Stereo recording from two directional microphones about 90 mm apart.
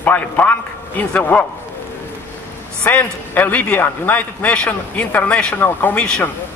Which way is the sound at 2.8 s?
15° left (ahead or behind).